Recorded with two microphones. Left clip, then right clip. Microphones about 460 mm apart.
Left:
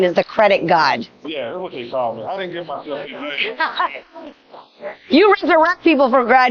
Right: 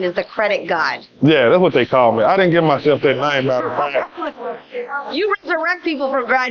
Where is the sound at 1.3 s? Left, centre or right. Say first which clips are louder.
Right 14 dB; right.